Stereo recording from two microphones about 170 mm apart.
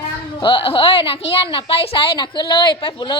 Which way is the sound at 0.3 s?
30° left (ahead or behind).